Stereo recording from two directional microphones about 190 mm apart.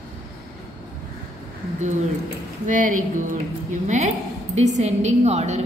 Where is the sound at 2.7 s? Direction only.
45° right (ahead or behind).